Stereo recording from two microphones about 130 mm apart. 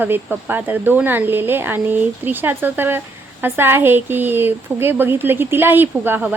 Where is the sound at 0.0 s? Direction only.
15° right (ahead or behind).